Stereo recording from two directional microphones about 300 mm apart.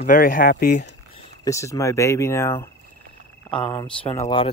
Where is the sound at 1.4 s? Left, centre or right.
Centre.